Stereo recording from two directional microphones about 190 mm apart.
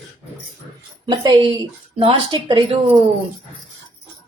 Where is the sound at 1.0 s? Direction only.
25° right (ahead or behind).